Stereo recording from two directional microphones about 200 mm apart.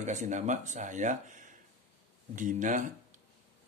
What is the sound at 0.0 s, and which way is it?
Speech, 35° right (ahead or behind).